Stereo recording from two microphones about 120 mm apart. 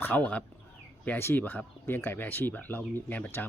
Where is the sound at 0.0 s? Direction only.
15° left (ahead or behind).